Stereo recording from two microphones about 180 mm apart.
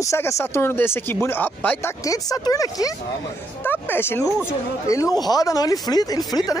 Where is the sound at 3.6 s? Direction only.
10° left (ahead or behind).